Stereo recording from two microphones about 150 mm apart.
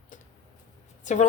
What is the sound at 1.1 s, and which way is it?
Speech, 55° left (ahead or behind).